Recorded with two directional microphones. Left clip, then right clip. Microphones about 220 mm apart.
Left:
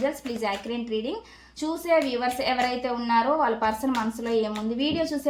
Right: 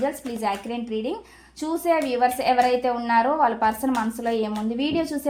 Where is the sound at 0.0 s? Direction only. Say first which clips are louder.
Right 2 dB; 30° right (ahead or behind).